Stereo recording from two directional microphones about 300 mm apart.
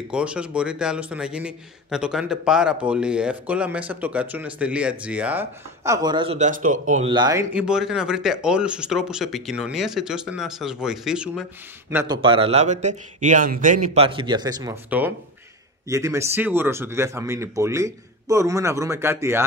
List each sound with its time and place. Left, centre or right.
0.1 s a man's voice: centre